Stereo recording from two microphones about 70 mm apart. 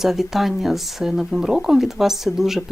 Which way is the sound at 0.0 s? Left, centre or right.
Centre.